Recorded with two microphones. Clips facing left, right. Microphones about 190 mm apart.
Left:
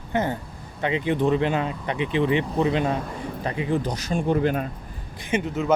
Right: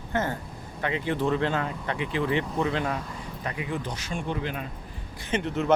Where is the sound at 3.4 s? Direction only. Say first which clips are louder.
Left 7 dB; 30° left (ahead or behind); by 4.6 s 45° left (ahead or behind).